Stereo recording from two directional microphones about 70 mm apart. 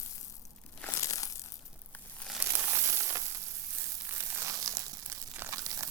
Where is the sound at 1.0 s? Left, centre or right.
Left.